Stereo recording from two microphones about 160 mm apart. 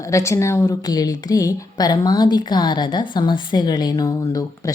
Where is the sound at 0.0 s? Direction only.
20° left (ahead or behind).